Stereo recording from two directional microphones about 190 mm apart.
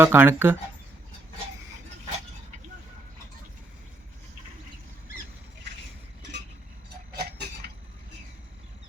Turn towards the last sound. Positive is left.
turn(degrees=-55)  # may be behind; listen again after turning